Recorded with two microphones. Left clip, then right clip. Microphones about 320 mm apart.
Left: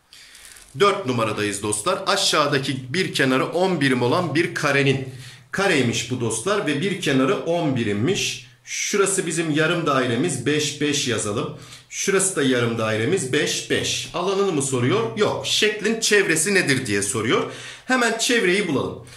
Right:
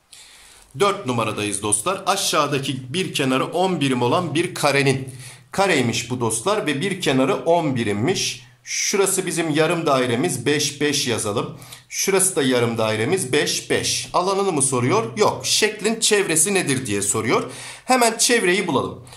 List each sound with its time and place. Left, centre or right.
0.7 s speech: centre